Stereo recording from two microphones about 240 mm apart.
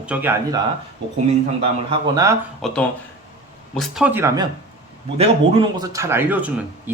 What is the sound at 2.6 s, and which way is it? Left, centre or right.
Speech, centre.